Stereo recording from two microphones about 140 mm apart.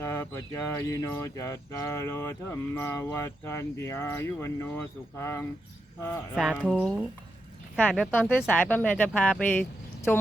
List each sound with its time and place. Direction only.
0.0 s speech: 20° left (ahead or behind)
6.3 s speech: 5° right (ahead or behind)
6.6 s speech: 5° left (ahead or behind)
8.1 s speech: 15° left (ahead or behind)